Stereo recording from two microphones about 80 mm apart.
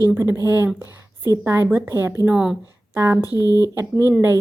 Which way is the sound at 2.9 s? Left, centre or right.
Right.